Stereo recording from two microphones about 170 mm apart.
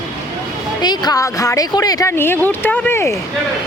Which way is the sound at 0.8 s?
25° left (ahead or behind).